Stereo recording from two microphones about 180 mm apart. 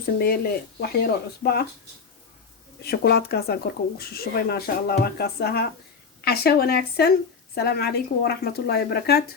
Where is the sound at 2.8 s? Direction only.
60° left (ahead or behind).